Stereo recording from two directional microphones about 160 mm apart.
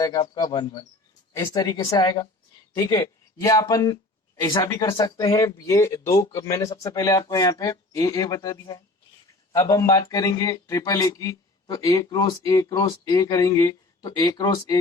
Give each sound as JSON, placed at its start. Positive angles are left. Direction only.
{"t": 0.0, "sound": "speech", "side_deg": 20}